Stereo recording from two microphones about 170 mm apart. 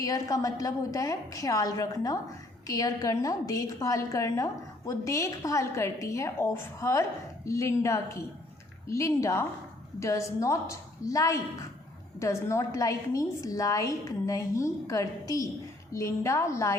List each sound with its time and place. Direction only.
0.0 s a woman's voice: 20° left (ahead or behind)